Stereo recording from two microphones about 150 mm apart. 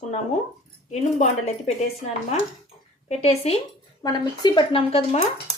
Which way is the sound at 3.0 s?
45° left (ahead or behind).